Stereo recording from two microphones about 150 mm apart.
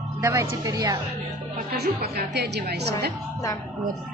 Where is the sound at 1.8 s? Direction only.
90° right.